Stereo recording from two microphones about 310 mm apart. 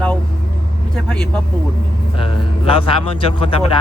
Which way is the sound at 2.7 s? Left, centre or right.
Centre.